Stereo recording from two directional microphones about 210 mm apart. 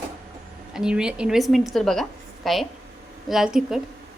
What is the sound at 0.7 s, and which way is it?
A woman's voice, 5° right (ahead or behind).